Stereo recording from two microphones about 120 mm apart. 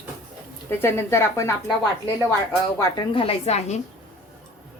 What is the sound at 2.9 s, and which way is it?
Speech, 50° left (ahead or behind).